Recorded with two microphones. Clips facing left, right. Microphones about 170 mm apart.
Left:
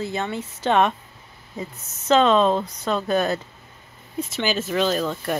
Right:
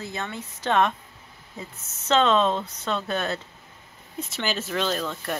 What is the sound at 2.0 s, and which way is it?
Speech, 10° left (ahead or behind).